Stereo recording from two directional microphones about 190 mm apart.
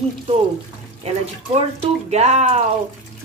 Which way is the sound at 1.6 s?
30° right (ahead or behind).